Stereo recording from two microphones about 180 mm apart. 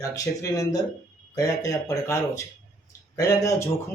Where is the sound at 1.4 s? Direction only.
15° left (ahead or behind).